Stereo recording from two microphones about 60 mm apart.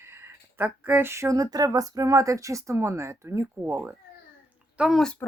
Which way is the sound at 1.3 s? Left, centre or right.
Right.